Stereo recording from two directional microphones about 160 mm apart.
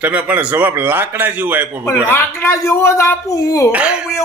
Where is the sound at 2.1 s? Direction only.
15° left (ahead or behind).